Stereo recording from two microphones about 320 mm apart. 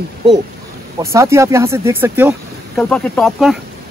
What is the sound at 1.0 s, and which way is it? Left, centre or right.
Speech, centre.